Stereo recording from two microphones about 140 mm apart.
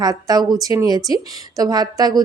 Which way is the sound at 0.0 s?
25° right (ahead or behind).